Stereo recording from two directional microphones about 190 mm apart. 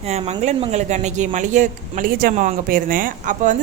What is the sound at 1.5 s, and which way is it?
A woman's voice, 45° right (ahead or behind).